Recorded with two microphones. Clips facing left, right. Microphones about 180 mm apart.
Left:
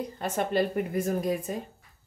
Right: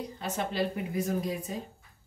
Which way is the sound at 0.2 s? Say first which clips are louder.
Left 4 dB; 55° left (ahead or behind).